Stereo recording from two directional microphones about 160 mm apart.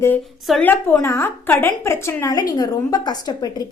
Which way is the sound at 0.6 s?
10° left (ahead or behind).